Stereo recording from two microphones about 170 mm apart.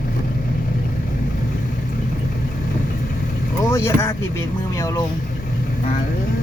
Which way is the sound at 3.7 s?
15° left (ahead or behind).